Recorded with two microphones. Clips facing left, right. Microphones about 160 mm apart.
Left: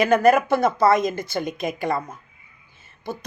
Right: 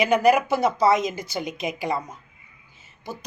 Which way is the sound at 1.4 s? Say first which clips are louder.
Left 3 dB; 50° left (ahead or behind).